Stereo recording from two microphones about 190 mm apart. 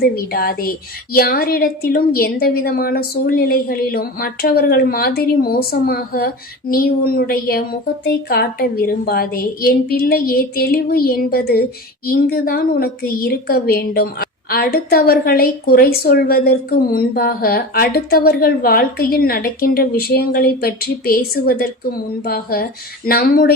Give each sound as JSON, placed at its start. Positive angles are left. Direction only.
{"t": 0.0, "sound": "a woman's voice", "side_deg": 50}